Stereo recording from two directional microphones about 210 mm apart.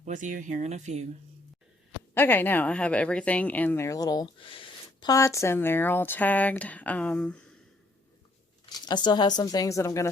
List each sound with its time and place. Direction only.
0.0 s speech: 35° right (ahead or behind)
2.1 s speech: 10° left (ahead or behind)
8.7 s speech: 20° left (ahead or behind)